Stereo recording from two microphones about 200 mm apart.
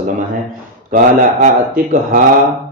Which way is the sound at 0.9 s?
40° right (ahead or behind).